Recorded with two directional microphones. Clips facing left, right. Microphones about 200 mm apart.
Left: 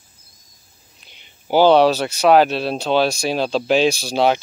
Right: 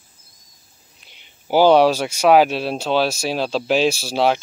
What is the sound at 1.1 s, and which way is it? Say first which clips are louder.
Speech: left 1 dB; 10° right (ahead or behind).